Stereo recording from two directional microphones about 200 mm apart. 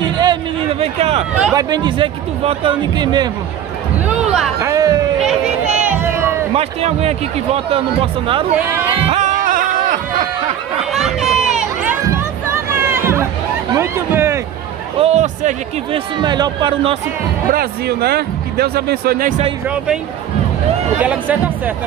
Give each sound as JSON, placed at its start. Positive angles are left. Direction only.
{"t": 0.0, "sound": "a sound", "side_deg": -20}
{"t": 1.5, "sound": "speech", "side_deg": -20}
{"t": 4.3, "sound": "a sound", "side_deg": -10}
{"t": 5.8, "sound": "crowd", "side_deg": -10}
{"t": 6.5, "sound": "speech", "side_deg": -30}
{"t": 8.5, "sound": "speech", "side_deg": -10}
{"t": 9.1, "sound": "a sound", "side_deg": -40}
{"t": 10.9, "sound": "chatter", "side_deg": 0}
{"t": 12.7, "sound": "music", "side_deg": -10}
{"t": 13.7, "sound": "a sound", "side_deg": -15}
{"t": 15.0, "sound": "speech", "side_deg": -30}
{"t": 16.2, "sound": "speech", "side_deg": -20}
{"t": 17.5, "sound": "speech", "side_deg": -50}
{"t": 21.0, "sound": "speech", "side_deg": -5}